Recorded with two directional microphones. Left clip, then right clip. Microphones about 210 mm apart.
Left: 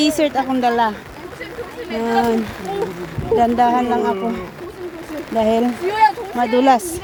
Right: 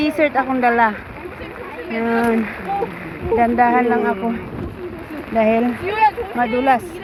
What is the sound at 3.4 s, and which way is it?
Speech, 25° left (ahead or behind).